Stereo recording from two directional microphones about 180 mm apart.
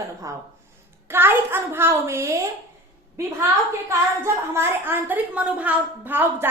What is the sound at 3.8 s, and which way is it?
A woman's voice, 15° right (ahead or behind).